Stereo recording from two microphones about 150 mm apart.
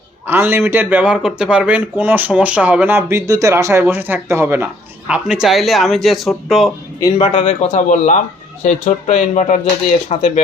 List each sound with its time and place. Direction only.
0.3 s speech: 15° right (ahead or behind)
7.2 s speech: 40° left (ahead or behind)